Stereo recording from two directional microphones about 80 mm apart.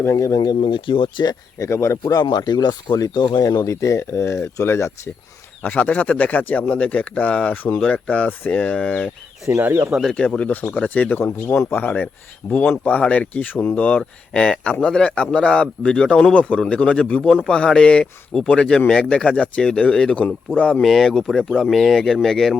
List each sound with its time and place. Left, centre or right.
0.0 s speech: left
0.6 s speech: left
1.5 s speech: left
2.2 s speech: left
5.6 s speech: centre
9.6 s speech: right
10.1 s speech: centre